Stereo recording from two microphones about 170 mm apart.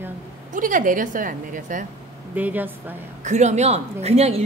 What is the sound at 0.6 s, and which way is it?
A woman's voice, 50° right (ahead or behind).